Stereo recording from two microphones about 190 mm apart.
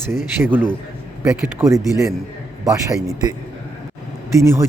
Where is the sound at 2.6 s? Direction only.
15° right (ahead or behind).